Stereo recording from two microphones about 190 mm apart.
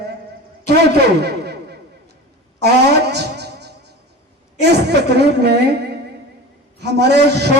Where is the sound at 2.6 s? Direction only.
60° right (ahead or behind).